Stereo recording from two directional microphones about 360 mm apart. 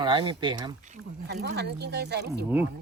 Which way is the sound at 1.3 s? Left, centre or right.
Right.